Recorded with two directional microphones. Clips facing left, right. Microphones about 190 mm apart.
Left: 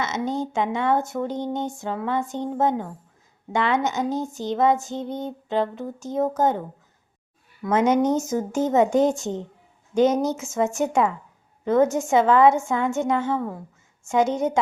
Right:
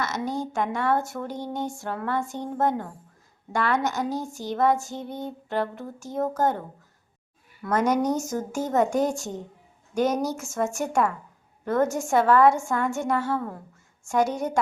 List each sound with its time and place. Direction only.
0.0 s speech: 20° left (ahead or behind)
7.7 s a woman's voice: 25° left (ahead or behind)